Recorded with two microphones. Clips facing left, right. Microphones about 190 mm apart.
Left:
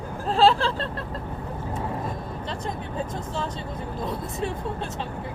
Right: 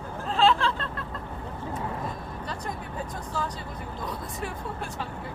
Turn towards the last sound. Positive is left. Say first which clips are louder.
# left 5 dB
turn(degrees=25)  # may be behind; listen again after turning